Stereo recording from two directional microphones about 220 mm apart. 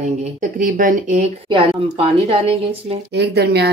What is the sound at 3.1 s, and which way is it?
Speech, 50° right (ahead or behind).